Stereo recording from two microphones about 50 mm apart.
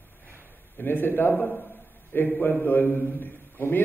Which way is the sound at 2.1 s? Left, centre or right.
Left.